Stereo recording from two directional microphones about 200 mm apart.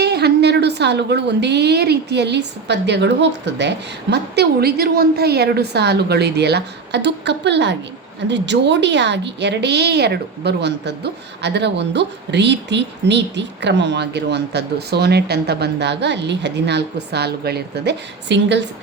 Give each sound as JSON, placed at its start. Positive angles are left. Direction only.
{"t": 0.0, "sound": "a woman's voice", "side_deg": -55}